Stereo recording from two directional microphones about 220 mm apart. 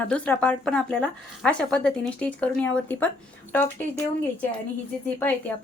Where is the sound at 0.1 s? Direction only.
5° left (ahead or behind).